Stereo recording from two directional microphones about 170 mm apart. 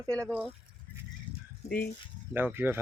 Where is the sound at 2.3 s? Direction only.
10° right (ahead or behind).